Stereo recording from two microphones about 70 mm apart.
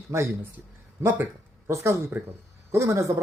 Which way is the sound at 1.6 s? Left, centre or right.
Right.